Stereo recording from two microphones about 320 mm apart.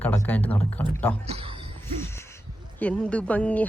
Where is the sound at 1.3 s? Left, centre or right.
Centre.